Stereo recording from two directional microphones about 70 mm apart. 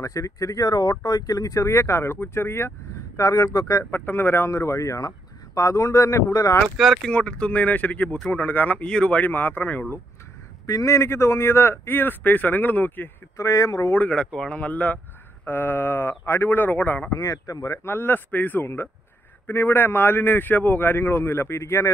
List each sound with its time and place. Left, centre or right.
0.0 s speech: left
3.2 s speech: left
3.9 s speech: left
7.2 s speech: centre
10.7 s speech: left
13.4 s speech: left
13.9 s speech: centre
17.1 s speech: left
17.8 s speech: left